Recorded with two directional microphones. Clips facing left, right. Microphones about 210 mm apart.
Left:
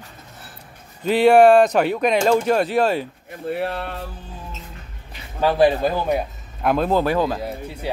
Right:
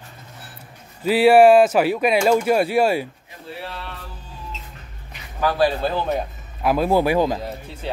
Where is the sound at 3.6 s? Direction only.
55° left (ahead or behind).